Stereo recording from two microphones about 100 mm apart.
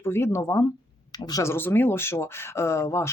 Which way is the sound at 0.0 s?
25° left (ahead or behind).